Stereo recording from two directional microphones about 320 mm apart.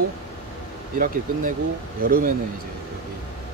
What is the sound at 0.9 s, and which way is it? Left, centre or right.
Speech, right.